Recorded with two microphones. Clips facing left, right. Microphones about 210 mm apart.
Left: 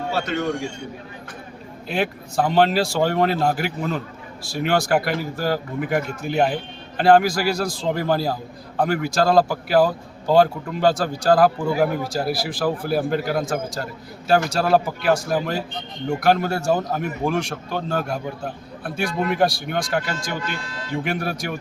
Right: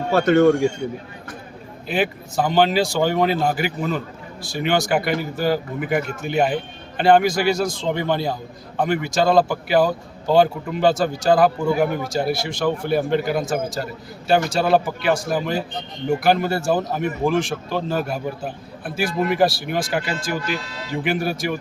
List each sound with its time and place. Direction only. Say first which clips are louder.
0.1 s a man's voice: right 11 dB; 50° right (ahead or behind)
1.9 s a man's voice: right 2 dB; centre (ahead or behind)